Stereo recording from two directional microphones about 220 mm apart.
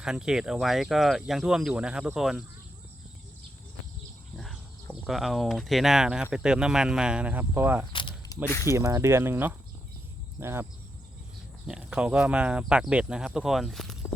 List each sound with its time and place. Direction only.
0.0 s speech: 5° right (ahead or behind)
4.4 s a sound: centre (ahead or behind)
6.3 s speech: 5° right (ahead or behind)
7.9 s a sound: 20° left (ahead or behind)
8.4 s speech: 15° left (ahead or behind)
8.7 s speech: 15° right (ahead or behind)
11.7 s speech: 5° right (ahead or behind)